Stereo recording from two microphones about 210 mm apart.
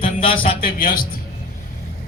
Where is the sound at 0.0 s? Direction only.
25° left (ahead or behind).